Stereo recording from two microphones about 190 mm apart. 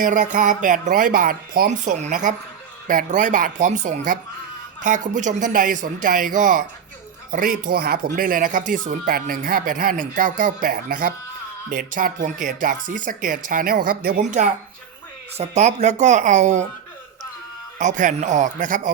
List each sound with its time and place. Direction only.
0.0 s speech: 45° right (ahead or behind)
15.4 s speech: 35° right (ahead or behind)
17.7 s speech: 40° right (ahead or behind)